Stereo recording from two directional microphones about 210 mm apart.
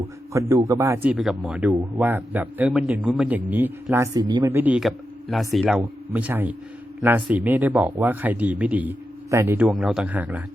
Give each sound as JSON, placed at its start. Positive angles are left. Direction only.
{"t": 0.3, "sound": "a man's voice", "side_deg": -15}
{"t": 4.5, "sound": "speech", "side_deg": -5}
{"t": 9.6, "sound": "a man's voice", "side_deg": 0}